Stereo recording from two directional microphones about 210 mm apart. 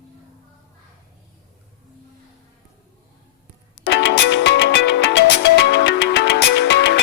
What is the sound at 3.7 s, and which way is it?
Music, 55° left (ahead or behind).